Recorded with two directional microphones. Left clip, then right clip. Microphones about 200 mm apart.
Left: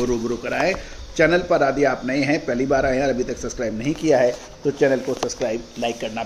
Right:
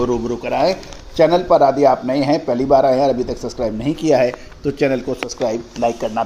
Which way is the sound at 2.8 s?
15° right (ahead or behind).